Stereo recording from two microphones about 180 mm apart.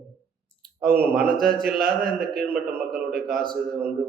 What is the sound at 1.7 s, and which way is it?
Speech, 55° right (ahead or behind).